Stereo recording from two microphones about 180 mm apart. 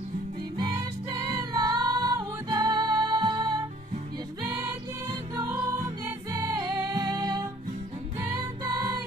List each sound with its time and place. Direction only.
1.1 s music: 20° right (ahead or behind)
5.3 s music: 20° right (ahead or behind)